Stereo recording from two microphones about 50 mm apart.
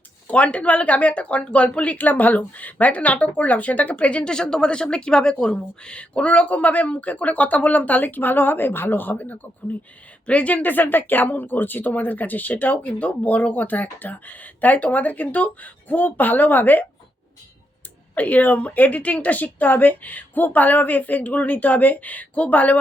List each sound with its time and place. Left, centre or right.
0.3 s speech: left
18.1 s speech: left